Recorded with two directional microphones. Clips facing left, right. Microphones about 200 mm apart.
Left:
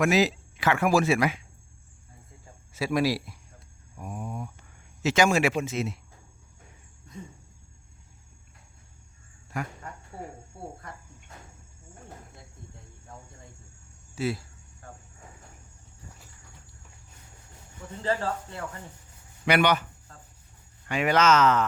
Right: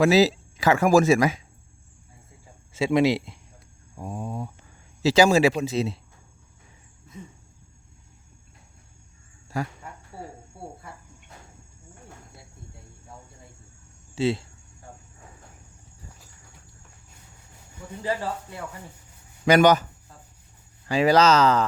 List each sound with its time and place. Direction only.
0.0 s speech: 35° right (ahead or behind)
2.7 s speech: 25° right (ahead or behind)
9.5 s speech: 35° right (ahead or behind)
10.1 s a sound: 5° right (ahead or behind)
14.2 s speech: 25° right (ahead or behind)
18.0 s speech: 10° right (ahead or behind)
19.5 s speech: 40° right (ahead or behind)
20.8 s speech: 35° right (ahead or behind)